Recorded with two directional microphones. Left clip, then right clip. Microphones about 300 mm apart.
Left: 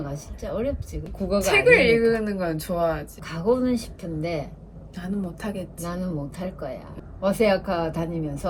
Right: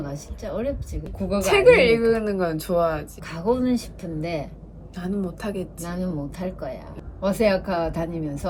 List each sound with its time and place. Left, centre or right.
0.4 s a woman's voice: centre
1.4 s a woman's voice: centre
3.2 s a woman's voice: centre
4.9 s a woman's voice: centre
5.8 s a woman's voice: centre